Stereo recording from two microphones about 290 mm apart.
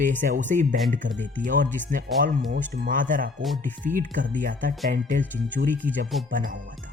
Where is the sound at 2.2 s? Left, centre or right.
Right.